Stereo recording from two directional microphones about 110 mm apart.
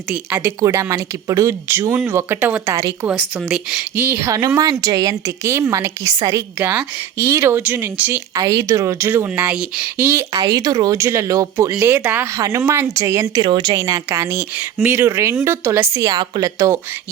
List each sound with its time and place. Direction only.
0.1 s a woman's voice: 15° right (ahead or behind)
0.6 s a woman's voice: 25° right (ahead or behind)
2.7 s a woman's voice: 30° right (ahead or behind)
3.5 s speech: 5° right (ahead or behind)
3.9 s a woman's voice: 20° right (ahead or behind)
6.6 s a woman's voice: 15° right (ahead or behind)
8.3 s a woman's voice: 30° right (ahead or behind)
10.3 s a woman's voice: 35° right (ahead or behind)
10.9 s a woman's voice: 25° right (ahead or behind)
13.4 s speech: 45° right (ahead or behind)
13.7 s a woman's voice: 25° right (ahead or behind)
16.0 s a woman's voice: 35° right (ahead or behind)